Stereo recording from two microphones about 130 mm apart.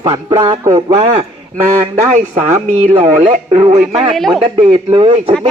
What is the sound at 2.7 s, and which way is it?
A man's voice, 65° right (ahead or behind).